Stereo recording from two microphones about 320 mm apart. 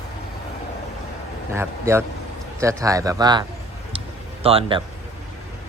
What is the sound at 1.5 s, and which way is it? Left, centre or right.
Speech, centre.